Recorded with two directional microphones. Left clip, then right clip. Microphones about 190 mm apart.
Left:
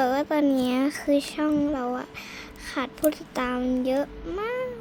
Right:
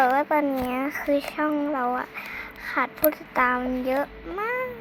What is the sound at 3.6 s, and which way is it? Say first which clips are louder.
Speech: even; 50° left (ahead or behind).